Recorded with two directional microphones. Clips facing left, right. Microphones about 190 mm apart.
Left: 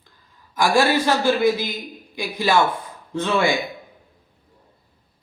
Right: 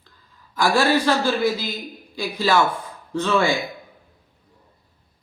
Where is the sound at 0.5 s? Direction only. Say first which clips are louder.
Left 1 dB; 15° left (ahead or behind).